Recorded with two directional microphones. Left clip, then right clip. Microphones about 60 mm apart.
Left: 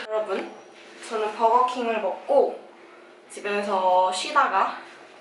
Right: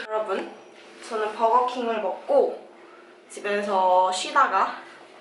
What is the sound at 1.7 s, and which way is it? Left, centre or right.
Speech, right.